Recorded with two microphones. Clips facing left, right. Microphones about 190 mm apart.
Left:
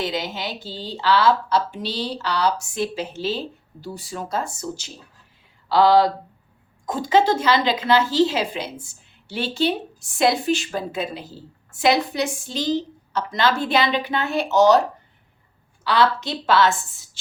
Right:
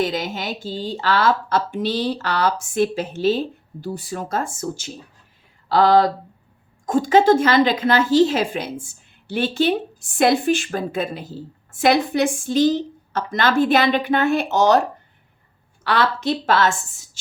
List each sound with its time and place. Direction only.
0.0 s speech: 50° right (ahead or behind)
15.8 s speech: 55° right (ahead or behind)